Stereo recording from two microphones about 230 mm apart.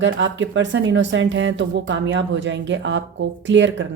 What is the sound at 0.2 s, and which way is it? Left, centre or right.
Speech, right.